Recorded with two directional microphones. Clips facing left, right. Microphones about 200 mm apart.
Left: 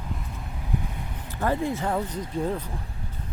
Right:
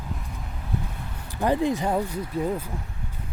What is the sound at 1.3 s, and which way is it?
Speech, 15° right (ahead or behind).